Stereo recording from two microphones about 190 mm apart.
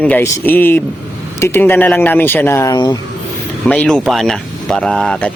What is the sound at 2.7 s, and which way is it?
Speech, 25° left (ahead or behind).